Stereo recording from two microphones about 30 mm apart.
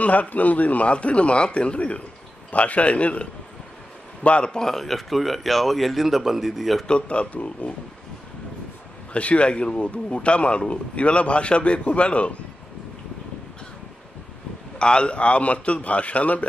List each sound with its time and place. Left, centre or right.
0.0 s a man's voice: left
4.5 s speech: left
4.7 s speech: centre
6.9 s a man's voice: left
9.1 s speech: left
9.5 s a man's voice: left
14.8 s speech: left